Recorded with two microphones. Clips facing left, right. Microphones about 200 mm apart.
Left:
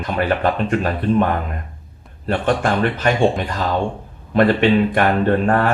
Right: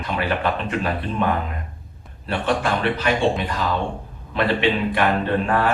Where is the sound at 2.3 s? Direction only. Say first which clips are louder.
Left 4 dB; 45° left (ahead or behind).